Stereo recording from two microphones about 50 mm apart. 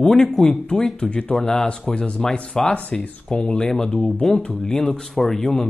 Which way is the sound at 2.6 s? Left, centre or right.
Left.